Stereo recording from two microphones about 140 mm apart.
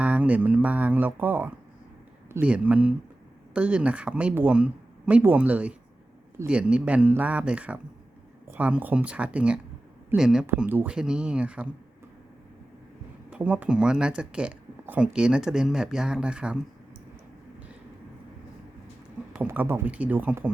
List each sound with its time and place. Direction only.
0.0 s speech: 10° right (ahead or behind)
13.3 s speech: 10° right (ahead or behind)
19.5 s speech: 15° right (ahead or behind)